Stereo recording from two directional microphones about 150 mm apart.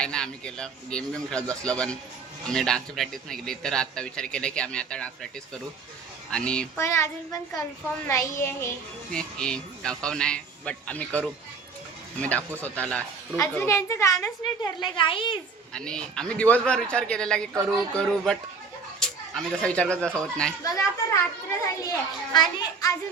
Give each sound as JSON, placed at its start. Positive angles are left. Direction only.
{"t": 0.0, "sound": "a man's voice", "side_deg": 5}
{"t": 6.3, "sound": "speech", "side_deg": 5}
{"t": 6.7, "sound": "a woman's voice", "side_deg": 20}
{"t": 9.1, "sound": "a man's voice", "side_deg": 5}
{"t": 12.4, "sound": "speech", "side_deg": -15}
{"t": 12.6, "sound": "a woman's voice", "side_deg": 10}
{"t": 14.8, "sound": "speech", "side_deg": 35}
{"t": 15.7, "sound": "a man's voice", "side_deg": 5}
{"t": 21.8, "sound": "a woman's voice", "side_deg": 25}